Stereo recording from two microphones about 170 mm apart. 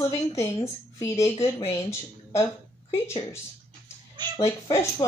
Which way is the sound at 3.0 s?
15° left (ahead or behind).